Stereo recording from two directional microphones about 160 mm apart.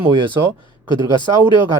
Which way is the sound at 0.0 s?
30° right (ahead or behind).